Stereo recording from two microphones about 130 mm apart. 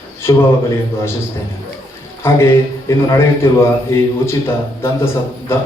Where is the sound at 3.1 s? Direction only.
20° left (ahead or behind).